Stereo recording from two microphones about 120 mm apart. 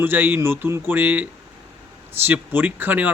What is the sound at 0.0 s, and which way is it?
Speech, 15° right (ahead or behind).